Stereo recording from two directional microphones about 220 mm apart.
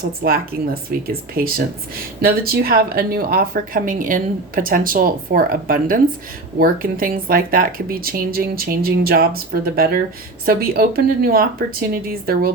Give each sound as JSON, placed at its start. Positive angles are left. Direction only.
{"t": 0.3, "sound": "speech", "side_deg": -40}